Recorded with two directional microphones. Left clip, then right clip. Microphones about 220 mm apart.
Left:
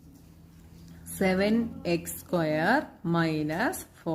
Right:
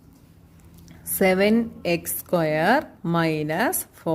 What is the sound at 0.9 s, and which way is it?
A woman's voice, 40° right (ahead or behind).